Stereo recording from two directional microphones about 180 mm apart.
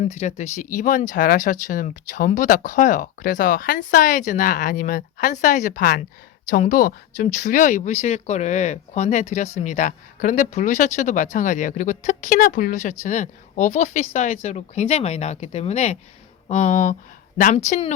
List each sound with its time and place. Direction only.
0.0 s speech: 40° left (ahead or behind)